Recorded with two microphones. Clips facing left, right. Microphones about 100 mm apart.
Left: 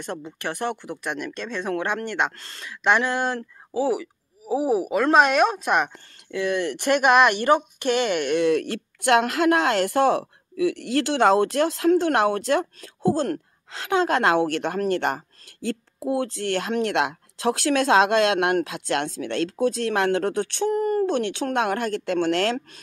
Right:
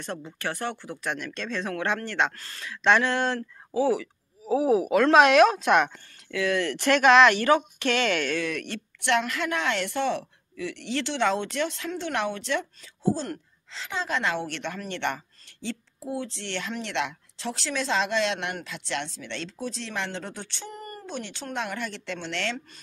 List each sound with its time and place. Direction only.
0.0 s speech: 15° left (ahead or behind)
2.4 s speech: 25° left (ahead or behind)
2.7 s speech: 10° left (ahead or behind)
6.3 s speech: 15° left (ahead or behind)
9.4 s a woman's voice: 40° left (ahead or behind)
12.8 s speech: 60° left (ahead or behind)
14.9 s speech: 40° left (ahead or behind)
16.0 s speech: 75° left (ahead or behind)
16.3 s a woman's voice: 45° left (ahead or behind)